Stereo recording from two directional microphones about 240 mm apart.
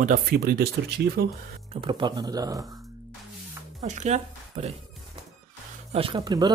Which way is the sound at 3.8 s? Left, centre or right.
Right.